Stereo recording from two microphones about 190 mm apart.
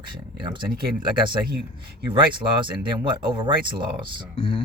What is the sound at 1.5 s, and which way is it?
Speech, 55° right (ahead or behind).